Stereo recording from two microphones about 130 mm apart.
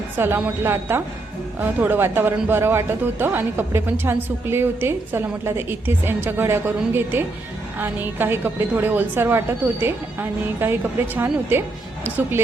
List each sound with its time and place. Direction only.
0.2 s speech: 15° right (ahead or behind)